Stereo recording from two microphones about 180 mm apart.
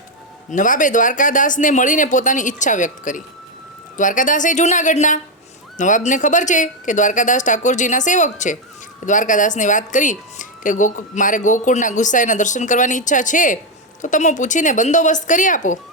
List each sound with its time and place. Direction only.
0.5 s speech: 45° left (ahead or behind)